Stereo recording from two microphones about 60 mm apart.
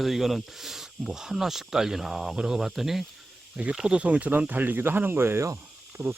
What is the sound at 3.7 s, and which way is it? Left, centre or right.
Speech, centre.